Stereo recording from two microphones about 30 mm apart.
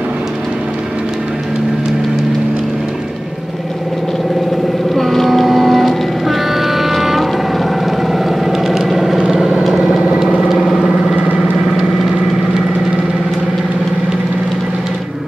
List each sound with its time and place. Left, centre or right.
4.9 s vehicle: centre
10.0 s vehicle: right
10.5 s vehicle: centre
11.1 s vehicle: right